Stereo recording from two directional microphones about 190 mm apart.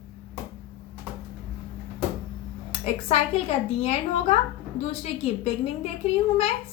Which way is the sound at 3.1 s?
35° left (ahead or behind).